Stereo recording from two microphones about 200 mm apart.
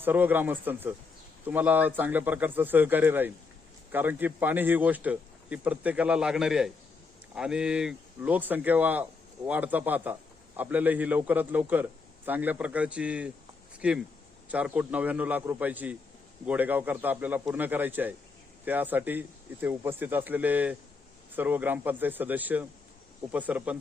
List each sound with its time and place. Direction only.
0.0 s speech: 10° right (ahead or behind)